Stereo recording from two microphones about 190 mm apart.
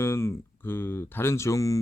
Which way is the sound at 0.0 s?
15° left (ahead or behind).